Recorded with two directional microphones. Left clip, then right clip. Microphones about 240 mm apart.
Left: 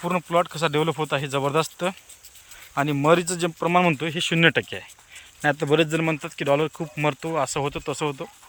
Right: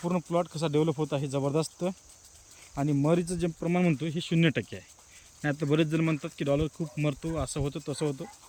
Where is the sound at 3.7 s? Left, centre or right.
Centre.